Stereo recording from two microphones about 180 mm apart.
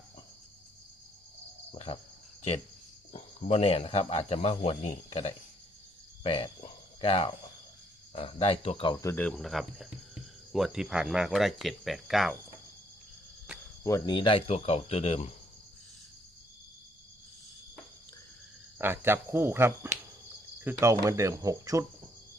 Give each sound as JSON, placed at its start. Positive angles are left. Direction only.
{"t": 1.7, "sound": "cricket", "side_deg": 35}
{"t": 3.1, "sound": "speech", "side_deg": 35}
{"t": 6.2, "sound": "cricket", "side_deg": 30}
{"t": 8.1, "sound": "speech", "side_deg": 30}
{"t": 13.8, "sound": "speech", "side_deg": 20}
{"t": 18.8, "sound": "speech", "side_deg": -10}